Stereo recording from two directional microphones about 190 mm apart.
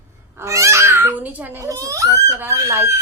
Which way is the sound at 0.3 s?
15° right (ahead or behind).